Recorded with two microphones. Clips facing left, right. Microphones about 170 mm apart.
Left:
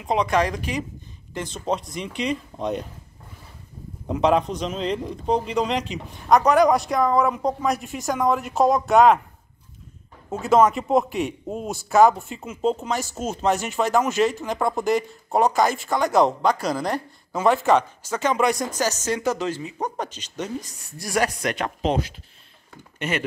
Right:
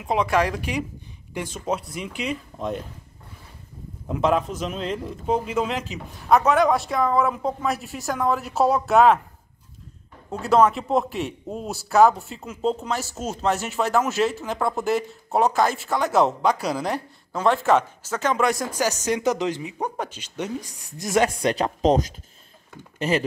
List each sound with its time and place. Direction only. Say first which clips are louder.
0.0 s a man's voice: even; 5° right (ahead or behind)
4.1 s a man's voice: left 2 dB; centre (ahead or behind)
10.3 s a man's voice: left 1 dB; centre (ahead or behind)
18.7 s speech: right 1 dB; 15° right (ahead or behind); by 23.2 s 35° right (ahead or behind)